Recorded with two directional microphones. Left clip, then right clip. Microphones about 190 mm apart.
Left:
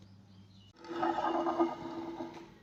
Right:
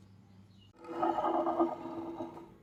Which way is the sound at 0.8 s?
15° right (ahead or behind).